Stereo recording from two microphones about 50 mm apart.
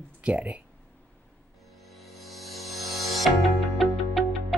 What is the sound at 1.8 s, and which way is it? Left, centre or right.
Music, centre.